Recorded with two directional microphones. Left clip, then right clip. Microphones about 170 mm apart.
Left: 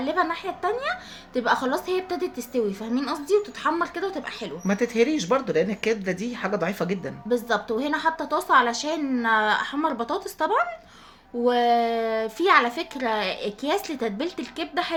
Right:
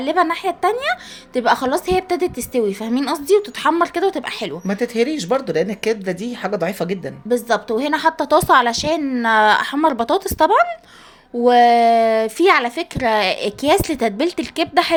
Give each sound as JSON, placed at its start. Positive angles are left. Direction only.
{"t": 0.0, "sound": "a woman's voice", "side_deg": -50}
{"t": 4.6, "sound": "speech", "side_deg": -20}
{"t": 7.3, "sound": "a woman's voice", "side_deg": -45}